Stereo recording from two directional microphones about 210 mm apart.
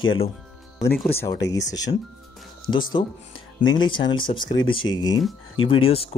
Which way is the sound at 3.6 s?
70° left (ahead or behind).